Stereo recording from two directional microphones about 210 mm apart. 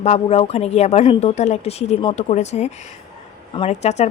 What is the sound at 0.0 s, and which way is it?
Speech, 30° left (ahead or behind).